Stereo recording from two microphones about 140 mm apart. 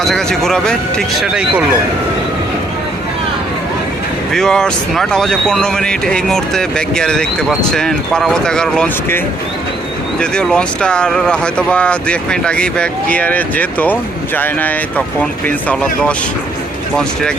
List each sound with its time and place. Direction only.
0.0 s speech: centre (ahead or behind)
4.3 s speech: 5° left (ahead or behind)
10.2 s speech: 5° left (ahead or behind)